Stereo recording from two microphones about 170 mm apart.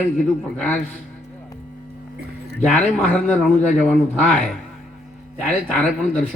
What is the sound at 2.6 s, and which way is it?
Speech, 5° left (ahead or behind).